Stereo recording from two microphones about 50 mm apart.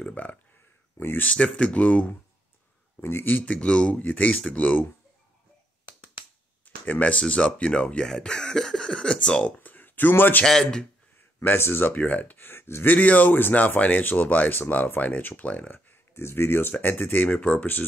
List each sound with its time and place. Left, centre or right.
0.1 s speech: left
1.3 s speech: left
3.0 s speech: left
3.3 s speech: left
3.5 s speech: centre
3.9 s speech: left
6.6 s speech: left; by 9.4 s centre
9.4 s speech: left
10.4 s speech: centre
11.3 s speech: left
12.8 s speech: left
15.7 s speech: left